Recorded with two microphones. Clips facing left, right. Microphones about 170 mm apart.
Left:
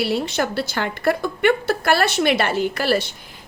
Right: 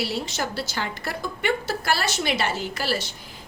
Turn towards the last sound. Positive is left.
turn(degrees=60)  # may be behind; listen again after turning